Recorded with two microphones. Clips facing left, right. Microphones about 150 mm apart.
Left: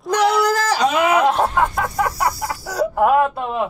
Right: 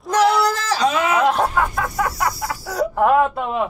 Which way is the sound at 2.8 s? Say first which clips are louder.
Even; 5° left (ahead or behind).